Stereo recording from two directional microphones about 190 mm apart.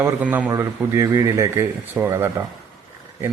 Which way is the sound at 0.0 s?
10° right (ahead or behind).